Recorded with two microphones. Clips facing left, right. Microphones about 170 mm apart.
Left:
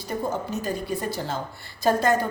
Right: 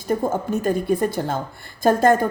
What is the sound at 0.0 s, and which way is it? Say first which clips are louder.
A woman's voice: right 6 dB; 50° right (ahead or behind).